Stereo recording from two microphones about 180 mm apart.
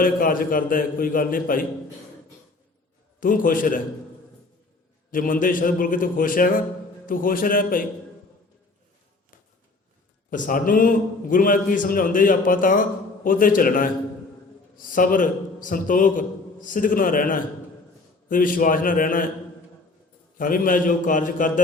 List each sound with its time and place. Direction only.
0.0 s a man's voice: 50° left (ahead or behind)
3.2 s a man's voice: 50° left (ahead or behind)
5.1 s a man's voice: 50° left (ahead or behind)
10.2 s a man's voice: 45° left (ahead or behind)
14.9 s a man's voice: 50° left (ahead or behind)
20.4 s a man's voice: 50° left (ahead or behind)